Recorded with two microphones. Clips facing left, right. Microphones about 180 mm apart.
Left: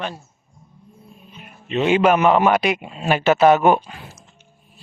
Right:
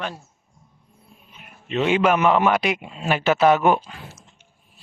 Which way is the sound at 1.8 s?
35° left (ahead or behind).